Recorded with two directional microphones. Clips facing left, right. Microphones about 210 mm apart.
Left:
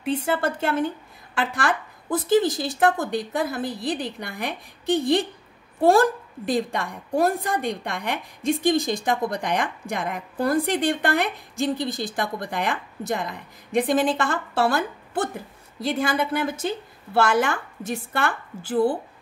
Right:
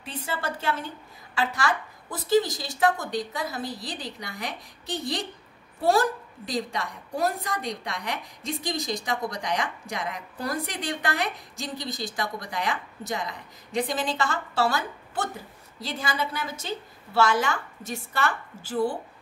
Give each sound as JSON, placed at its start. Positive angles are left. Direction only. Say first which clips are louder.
{"t": 0.0, "sound": "a woman's voice", "louder": "left 9 dB", "side_deg": 55}